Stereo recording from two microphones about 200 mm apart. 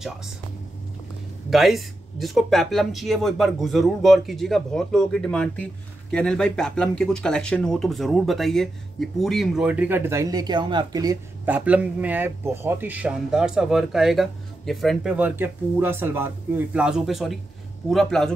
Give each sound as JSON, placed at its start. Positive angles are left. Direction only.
{"t": 1.5, "sound": "speech", "side_deg": 0}